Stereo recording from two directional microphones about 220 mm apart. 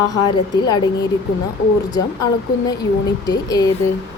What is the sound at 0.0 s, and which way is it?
Speech, 15° left (ahead or behind).